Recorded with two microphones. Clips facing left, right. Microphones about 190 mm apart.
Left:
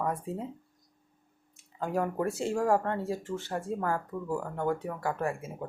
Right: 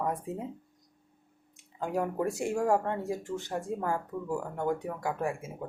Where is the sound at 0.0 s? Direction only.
15° right (ahead or behind).